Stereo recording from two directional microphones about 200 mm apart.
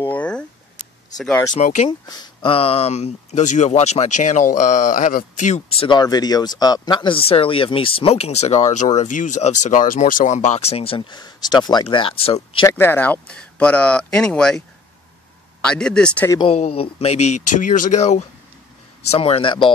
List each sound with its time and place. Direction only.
0.0 s a sound: 10° left (ahead or behind)
1.1 s speech: centre (ahead or behind)
1.5 s speech: 35° left (ahead or behind)
1.9 s speech: 20° left (ahead or behind)
12.6 s speech: 10° left (ahead or behind)
15.6 s speech: 5° left (ahead or behind)
16.3 s a man's voice: 25° left (ahead or behind)